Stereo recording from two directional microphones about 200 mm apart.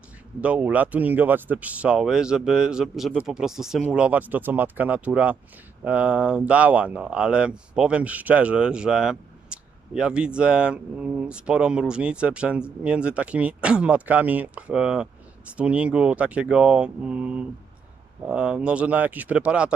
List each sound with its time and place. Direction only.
0.4 s speech: 5° right (ahead or behind)